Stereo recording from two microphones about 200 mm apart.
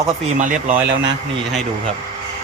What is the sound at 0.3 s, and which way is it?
Speech, 40° right (ahead or behind).